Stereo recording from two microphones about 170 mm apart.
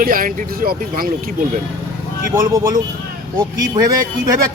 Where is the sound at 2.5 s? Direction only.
20° right (ahead or behind).